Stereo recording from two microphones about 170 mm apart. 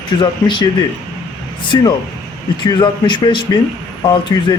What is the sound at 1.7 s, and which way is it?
Speech, 20° left (ahead or behind).